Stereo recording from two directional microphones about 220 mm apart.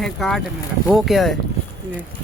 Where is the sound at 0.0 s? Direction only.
Centre (ahead or behind).